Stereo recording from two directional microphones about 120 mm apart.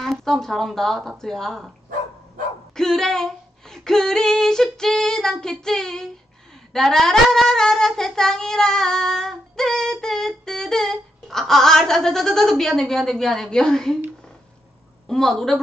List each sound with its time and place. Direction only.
0.0 s speech: centre (ahead or behind)
2.7 s speech: 5° left (ahead or behind)
15.0 s speech: 5° left (ahead or behind)